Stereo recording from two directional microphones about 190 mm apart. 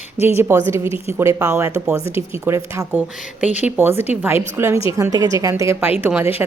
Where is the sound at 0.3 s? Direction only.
15° right (ahead or behind).